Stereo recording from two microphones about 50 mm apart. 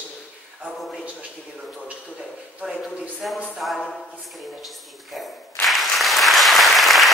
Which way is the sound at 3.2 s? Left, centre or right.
Centre.